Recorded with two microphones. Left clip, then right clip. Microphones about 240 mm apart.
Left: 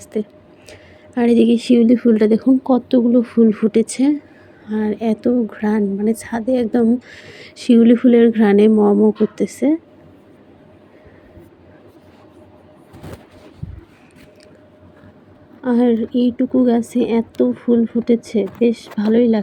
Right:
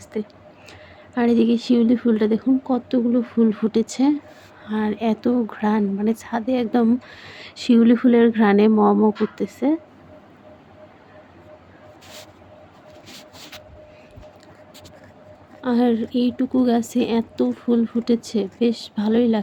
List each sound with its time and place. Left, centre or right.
0.1 s a woman's voice: centre
15.6 s a woman's voice: centre